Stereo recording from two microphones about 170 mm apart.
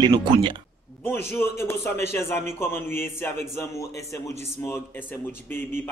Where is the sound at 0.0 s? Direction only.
25° right (ahead or behind).